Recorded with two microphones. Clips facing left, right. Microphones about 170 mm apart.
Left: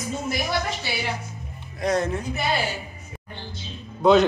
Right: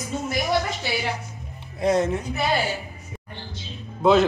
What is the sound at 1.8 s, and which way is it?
Speech, 25° right (ahead or behind).